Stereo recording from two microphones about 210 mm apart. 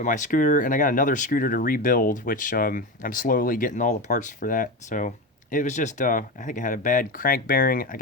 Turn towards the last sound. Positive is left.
turn(degrees=40)  # may be behind; listen again after turning